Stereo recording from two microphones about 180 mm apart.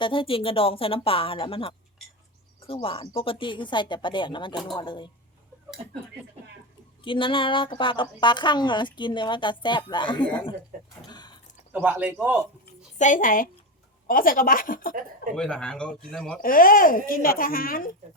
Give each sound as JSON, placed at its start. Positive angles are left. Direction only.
{"t": 0.0, "sound": "a woman's voice", "side_deg": 30}
{"t": 7.0, "sound": "a woman's voice", "side_deg": 30}
{"t": 11.1, "sound": "a sound", "side_deg": 25}
{"t": 11.7, "sound": "a man's voice", "side_deg": -10}
{"t": 13.0, "sound": "speech", "side_deg": 45}
{"t": 15.4, "sound": "speech", "side_deg": 5}
{"t": 16.4, "sound": "speech", "side_deg": 50}